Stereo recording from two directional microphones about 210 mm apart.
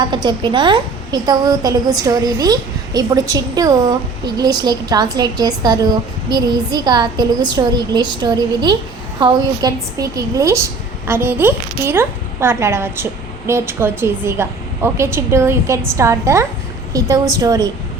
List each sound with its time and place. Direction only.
0.0 s a woman's voice: 20° right (ahead or behind)